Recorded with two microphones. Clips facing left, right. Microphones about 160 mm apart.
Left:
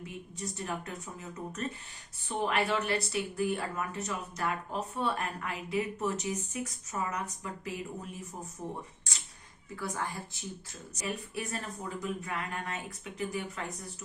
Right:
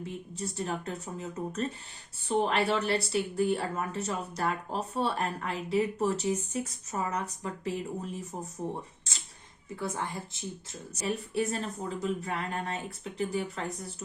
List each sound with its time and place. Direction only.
0.0 s speech: 30° right (ahead or behind)
9.7 s speech: 25° right (ahead or behind)